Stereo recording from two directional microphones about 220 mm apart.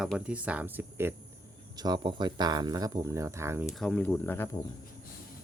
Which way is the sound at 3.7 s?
5° left (ahead or behind).